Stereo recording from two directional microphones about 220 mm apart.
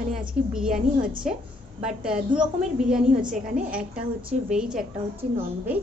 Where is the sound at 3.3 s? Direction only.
35° right (ahead or behind).